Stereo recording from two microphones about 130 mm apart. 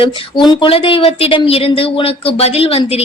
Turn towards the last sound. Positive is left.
turn(degrees=50)  # may be behind; listen again after turning